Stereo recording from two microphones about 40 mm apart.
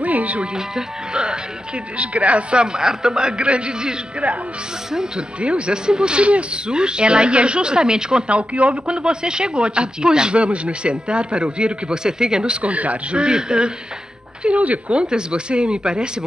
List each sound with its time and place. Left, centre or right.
0.0 s music: right
0.6 s speech: centre
2.0 s speech: right
2.6 s speech: centre
5.4 s speech: right
8.3 s speech: right
8.9 s speech: centre
12.4 s speech: right; by 13.7 s centre
14.4 s speech: right